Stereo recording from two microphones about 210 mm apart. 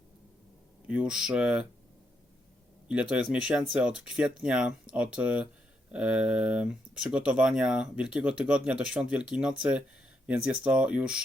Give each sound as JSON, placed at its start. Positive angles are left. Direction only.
{"t": 0.9, "sound": "speech", "side_deg": -5}
{"t": 2.9, "sound": "speech", "side_deg": -5}